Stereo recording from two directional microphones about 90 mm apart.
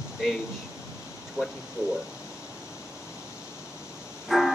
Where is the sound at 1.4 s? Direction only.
35° left (ahead or behind).